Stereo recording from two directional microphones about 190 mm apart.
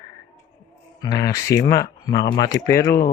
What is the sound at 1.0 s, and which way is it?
Speech, 20° left (ahead or behind).